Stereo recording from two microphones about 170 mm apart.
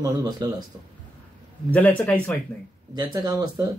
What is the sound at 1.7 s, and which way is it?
Speech, 10° left (ahead or behind).